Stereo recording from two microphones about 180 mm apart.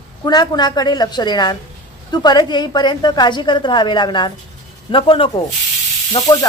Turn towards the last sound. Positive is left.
turn(degrees=30)  # may be behind; listen again after turning